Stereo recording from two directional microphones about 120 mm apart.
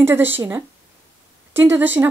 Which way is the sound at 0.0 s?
20° right (ahead or behind).